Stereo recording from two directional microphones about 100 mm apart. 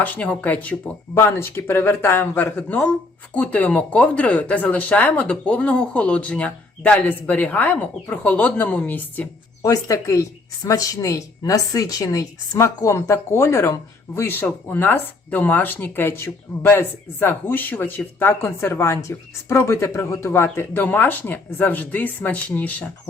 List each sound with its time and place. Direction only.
0.0 s speech: 15° left (ahead or behind)
1.1 s speech: 25° left (ahead or behind)
9.6 s speech: 35° left (ahead or behind); by 22.9 s 15° left (ahead or behind)